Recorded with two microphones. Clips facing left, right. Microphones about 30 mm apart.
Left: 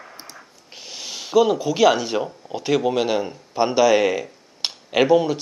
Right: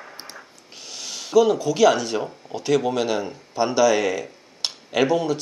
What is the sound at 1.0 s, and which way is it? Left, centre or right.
Speech, centre.